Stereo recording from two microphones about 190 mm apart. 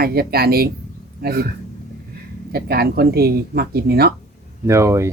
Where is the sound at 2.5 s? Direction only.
55° right (ahead or behind).